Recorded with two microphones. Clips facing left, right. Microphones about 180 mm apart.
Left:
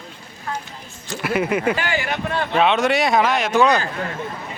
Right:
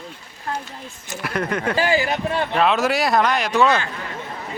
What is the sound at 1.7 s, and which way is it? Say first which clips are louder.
Speech: right 4 dB; 35° right (ahead or behind).